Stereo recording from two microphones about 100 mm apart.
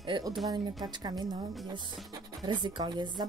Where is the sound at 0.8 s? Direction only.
45° right (ahead or behind).